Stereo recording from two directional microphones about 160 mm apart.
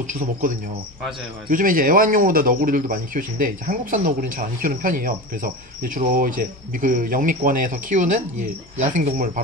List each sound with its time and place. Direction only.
0.0 s speech: 50° right (ahead or behind)
1.5 s speech: 60° right (ahead or behind)